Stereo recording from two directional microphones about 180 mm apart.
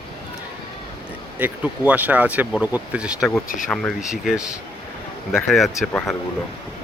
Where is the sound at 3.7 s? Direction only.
5° left (ahead or behind).